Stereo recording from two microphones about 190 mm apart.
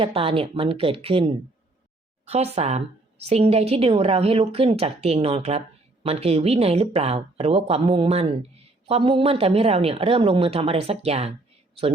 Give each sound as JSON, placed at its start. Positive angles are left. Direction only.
{"t": 0.0, "sound": "a woman's voice", "side_deg": -30}